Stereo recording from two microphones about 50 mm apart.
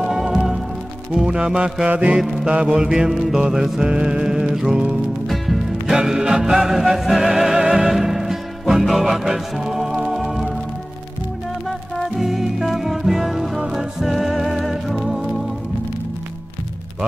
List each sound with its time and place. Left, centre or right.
0.0 s music: centre
1.9 s mantra: right
2.4 s music: centre
5.3 s music: centre
5.9 s music: centre
12.2 s music: centre